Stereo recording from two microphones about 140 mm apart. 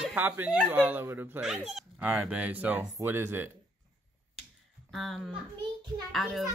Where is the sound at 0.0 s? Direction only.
15° right (ahead or behind).